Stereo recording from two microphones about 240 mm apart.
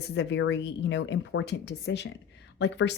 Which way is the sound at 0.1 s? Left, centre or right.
Left.